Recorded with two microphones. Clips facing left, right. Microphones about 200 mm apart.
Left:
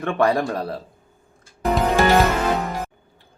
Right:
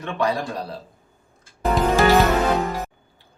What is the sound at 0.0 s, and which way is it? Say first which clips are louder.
Speech: left 4 dB; 50° left (ahead or behind).